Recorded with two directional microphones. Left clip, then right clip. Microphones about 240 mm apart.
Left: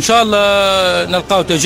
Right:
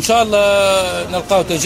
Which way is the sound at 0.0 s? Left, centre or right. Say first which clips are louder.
Left 2 dB; left.